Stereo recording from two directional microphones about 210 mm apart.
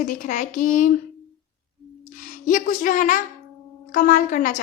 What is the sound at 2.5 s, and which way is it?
A child's voice, 40° left (ahead or behind).